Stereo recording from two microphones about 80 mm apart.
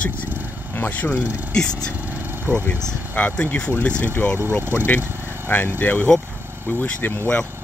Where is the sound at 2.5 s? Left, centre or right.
Centre.